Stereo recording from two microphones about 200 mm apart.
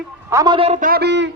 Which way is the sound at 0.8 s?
50° right (ahead or behind).